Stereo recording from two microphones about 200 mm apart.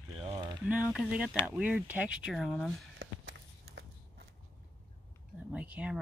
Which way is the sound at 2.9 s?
60° right (ahead or behind).